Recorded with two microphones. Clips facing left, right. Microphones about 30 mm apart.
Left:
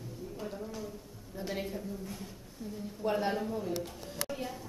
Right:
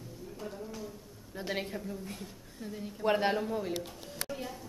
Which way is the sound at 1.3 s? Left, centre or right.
Right.